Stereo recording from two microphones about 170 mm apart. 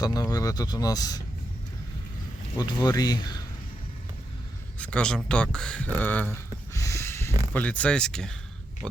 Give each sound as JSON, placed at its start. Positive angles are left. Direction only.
{"t": 0.0, "sound": "speech", "side_deg": 20}
{"t": 2.6, "sound": "speech", "side_deg": 25}
{"t": 4.8, "sound": "speech", "side_deg": 5}
{"t": 6.7, "sound": "a sound", "side_deg": 20}
{"t": 7.5, "sound": "speech", "side_deg": 10}